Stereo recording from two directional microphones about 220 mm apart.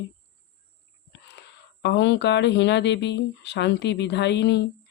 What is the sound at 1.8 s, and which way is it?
Speech, 50° left (ahead or behind).